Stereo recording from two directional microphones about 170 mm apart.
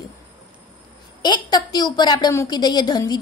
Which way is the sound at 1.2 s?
25° left (ahead or behind).